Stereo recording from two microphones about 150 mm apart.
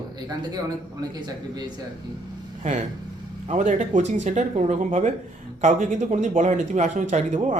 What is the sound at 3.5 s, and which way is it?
Speech, 55° right (ahead or behind).